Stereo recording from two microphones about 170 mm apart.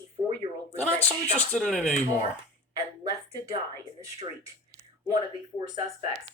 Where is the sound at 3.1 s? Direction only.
20° right (ahead or behind).